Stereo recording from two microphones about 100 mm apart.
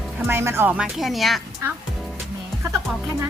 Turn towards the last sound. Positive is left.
turn(degrees=-30)  # may be behind; listen again after turning